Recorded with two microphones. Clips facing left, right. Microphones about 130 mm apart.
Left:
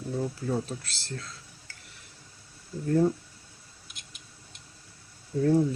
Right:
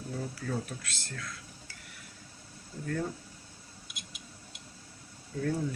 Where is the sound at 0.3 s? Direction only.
25° left (ahead or behind).